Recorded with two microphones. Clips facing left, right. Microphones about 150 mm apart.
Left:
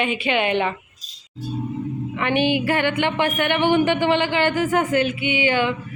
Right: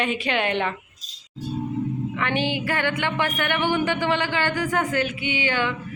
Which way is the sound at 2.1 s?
15° left (ahead or behind).